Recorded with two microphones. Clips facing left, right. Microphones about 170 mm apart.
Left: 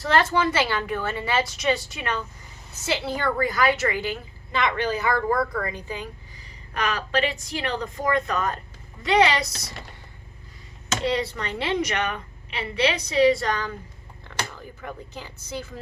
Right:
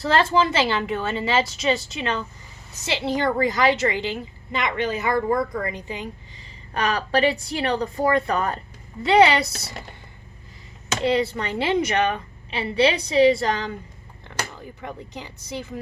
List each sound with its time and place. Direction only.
0.0 s a woman's voice: 30° right (ahead or behind)
6.7 s a woman's voice: 35° right (ahead or behind)
11.0 s a woman's voice: 30° right (ahead or behind)
14.8 s a woman's voice: 15° right (ahead or behind)